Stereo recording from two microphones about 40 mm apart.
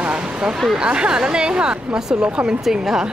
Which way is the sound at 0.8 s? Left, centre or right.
Right.